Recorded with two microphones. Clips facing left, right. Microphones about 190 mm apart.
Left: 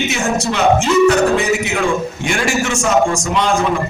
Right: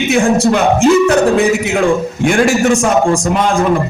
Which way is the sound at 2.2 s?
55° right (ahead or behind).